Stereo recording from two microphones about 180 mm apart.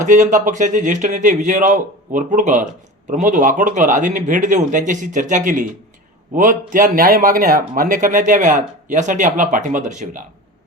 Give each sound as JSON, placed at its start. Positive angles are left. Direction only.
{"t": 0.0, "sound": "a man's voice", "side_deg": -45}